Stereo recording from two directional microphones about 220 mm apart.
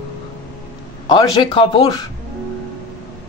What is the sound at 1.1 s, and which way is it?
Speech, 20° left (ahead or behind).